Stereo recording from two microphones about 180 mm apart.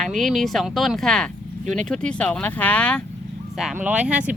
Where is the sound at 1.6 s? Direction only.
40° right (ahead or behind).